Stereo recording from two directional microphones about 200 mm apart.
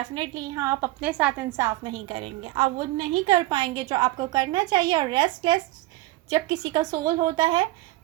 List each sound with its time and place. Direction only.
0.0 s a woman's voice: 20° right (ahead or behind)